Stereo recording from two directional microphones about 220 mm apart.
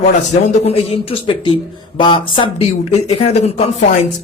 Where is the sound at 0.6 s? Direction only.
25° left (ahead or behind).